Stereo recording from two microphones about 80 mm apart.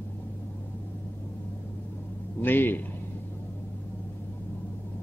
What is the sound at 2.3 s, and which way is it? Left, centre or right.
Speech, left.